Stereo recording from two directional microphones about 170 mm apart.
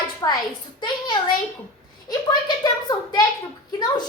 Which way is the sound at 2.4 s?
25° left (ahead or behind).